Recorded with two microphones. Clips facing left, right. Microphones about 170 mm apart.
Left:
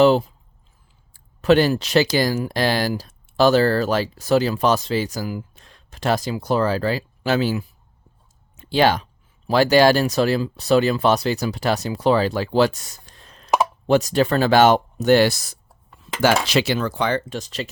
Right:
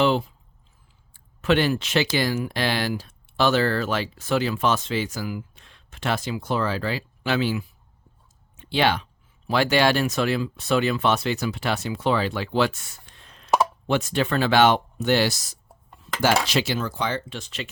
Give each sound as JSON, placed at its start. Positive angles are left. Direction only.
{"t": 0.0, "sound": "speech", "side_deg": 40}
{"t": 8.5, "sound": "a sound", "side_deg": 40}
{"t": 9.5, "sound": "speech", "side_deg": 40}
{"t": 16.2, "sound": "speech", "side_deg": 75}